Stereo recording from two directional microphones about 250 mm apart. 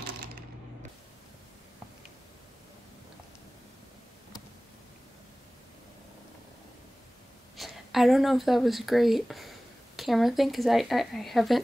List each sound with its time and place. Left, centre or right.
7.5 s speech: centre